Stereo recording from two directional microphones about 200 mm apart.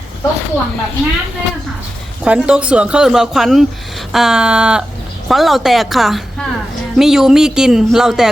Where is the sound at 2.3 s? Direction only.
5° right (ahead or behind).